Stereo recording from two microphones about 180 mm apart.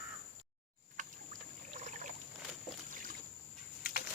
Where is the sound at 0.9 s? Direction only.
45° right (ahead or behind).